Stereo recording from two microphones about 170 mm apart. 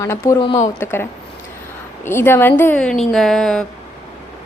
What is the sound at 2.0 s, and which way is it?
Speech, 15° left (ahead or behind).